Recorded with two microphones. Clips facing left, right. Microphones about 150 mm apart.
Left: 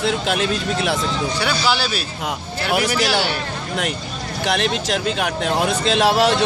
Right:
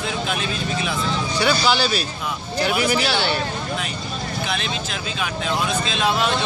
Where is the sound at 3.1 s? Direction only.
10° left (ahead or behind).